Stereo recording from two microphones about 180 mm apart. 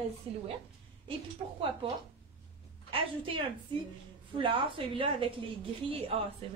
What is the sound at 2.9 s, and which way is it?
A woman's voice, 30° right (ahead or behind).